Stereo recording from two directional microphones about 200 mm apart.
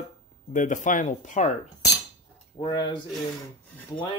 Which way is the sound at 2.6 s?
20° left (ahead or behind).